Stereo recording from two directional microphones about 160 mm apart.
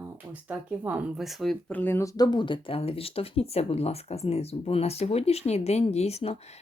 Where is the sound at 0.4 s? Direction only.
10° right (ahead or behind).